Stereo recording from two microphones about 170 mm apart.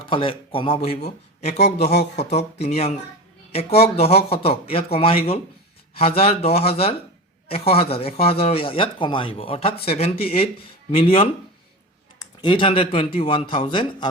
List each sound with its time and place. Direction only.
0.0 s speech: 30° left (ahead or behind)